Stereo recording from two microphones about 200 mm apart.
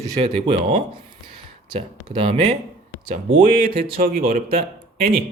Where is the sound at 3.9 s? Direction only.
45° right (ahead or behind).